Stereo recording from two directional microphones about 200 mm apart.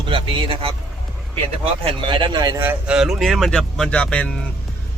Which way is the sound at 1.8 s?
25° right (ahead or behind).